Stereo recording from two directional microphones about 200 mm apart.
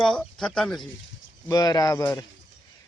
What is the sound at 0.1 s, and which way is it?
Speech, 5° left (ahead or behind).